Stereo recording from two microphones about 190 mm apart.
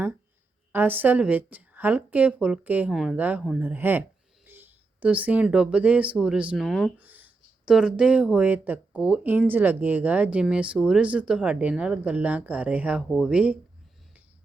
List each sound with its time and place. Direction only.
0.7 s speech: 10° right (ahead or behind)